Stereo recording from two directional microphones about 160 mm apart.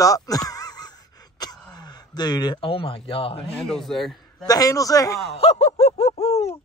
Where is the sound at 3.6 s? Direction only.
Centre (ahead or behind).